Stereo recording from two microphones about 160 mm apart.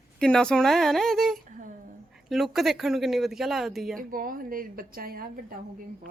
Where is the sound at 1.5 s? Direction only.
55° right (ahead or behind).